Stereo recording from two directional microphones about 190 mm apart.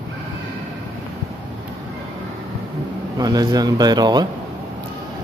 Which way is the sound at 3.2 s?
20° right (ahead or behind).